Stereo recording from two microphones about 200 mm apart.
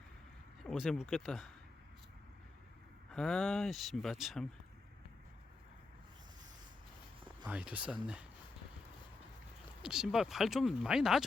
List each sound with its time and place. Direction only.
0.6 s speech: centre (ahead or behind)
3.1 s speech: centre (ahead or behind)
7.4 s speech: 5° right (ahead or behind)
9.8 s speech: 5° right (ahead or behind)